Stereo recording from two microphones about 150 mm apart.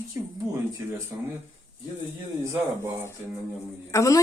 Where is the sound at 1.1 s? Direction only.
20° right (ahead or behind).